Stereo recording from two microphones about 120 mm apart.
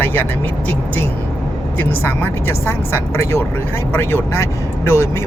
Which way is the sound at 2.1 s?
20° left (ahead or behind).